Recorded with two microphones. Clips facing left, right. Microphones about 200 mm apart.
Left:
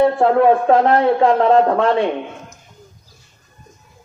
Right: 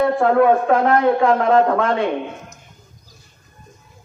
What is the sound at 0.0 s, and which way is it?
Speech, 30° left (ahead or behind).